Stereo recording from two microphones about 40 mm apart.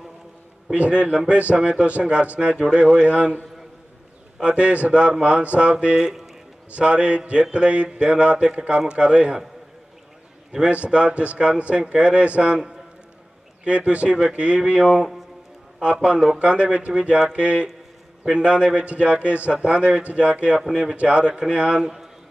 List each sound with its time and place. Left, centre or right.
0.7 s a man's voice: right
4.4 s a man's voice: right
10.7 s a man's voice: right
16.3 s a man's voice: right